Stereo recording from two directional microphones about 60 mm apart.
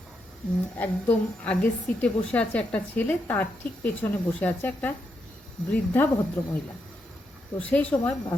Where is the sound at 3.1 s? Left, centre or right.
Left.